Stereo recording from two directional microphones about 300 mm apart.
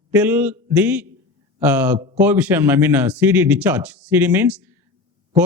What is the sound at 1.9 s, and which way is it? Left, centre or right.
Speech, centre.